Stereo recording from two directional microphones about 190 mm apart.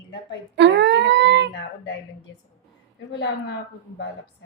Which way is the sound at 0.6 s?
65° right (ahead or behind).